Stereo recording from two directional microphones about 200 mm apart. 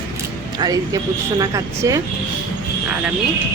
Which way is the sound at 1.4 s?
15° right (ahead or behind).